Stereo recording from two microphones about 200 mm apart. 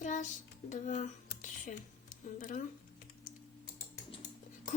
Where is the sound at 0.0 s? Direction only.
40° left (ahead or behind).